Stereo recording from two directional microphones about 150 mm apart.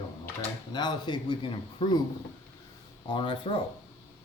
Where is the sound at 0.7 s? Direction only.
30° left (ahead or behind).